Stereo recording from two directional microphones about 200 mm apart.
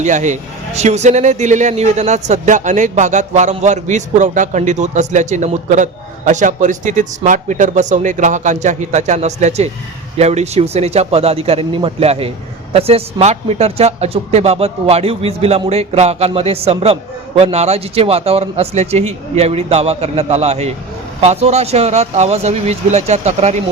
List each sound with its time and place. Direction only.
0.0 s a man's voice: 35° right (ahead or behind)